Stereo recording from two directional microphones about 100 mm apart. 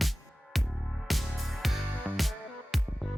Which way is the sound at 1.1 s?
Centre (ahead or behind).